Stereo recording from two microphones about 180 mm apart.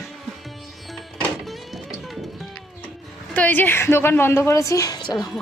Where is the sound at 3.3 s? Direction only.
10° left (ahead or behind).